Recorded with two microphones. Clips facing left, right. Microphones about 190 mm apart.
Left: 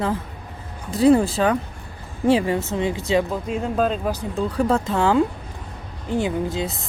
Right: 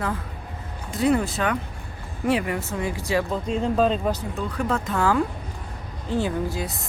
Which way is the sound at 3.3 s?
5° left (ahead or behind).